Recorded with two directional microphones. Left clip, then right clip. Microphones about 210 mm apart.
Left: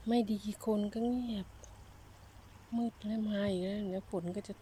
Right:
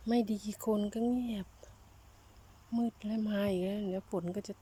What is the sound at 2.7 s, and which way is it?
Speech, 5° right (ahead or behind).